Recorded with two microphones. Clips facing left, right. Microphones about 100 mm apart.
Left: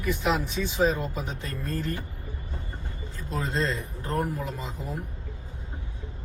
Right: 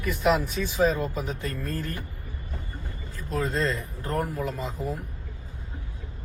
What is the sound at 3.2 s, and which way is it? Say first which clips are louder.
Speech: right 2 dB; 25° left (ahead or behind).